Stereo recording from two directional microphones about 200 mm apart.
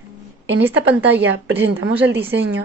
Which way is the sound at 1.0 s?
60° right (ahead or behind).